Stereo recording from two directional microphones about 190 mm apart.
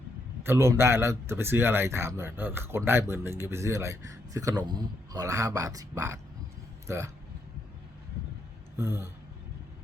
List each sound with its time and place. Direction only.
0.4 s speech: 15° right (ahead or behind)
8.7 s speech: 15° right (ahead or behind)